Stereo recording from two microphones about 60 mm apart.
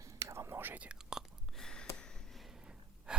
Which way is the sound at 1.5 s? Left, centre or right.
Centre.